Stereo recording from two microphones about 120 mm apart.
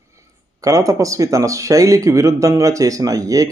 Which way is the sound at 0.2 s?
30° right (ahead or behind).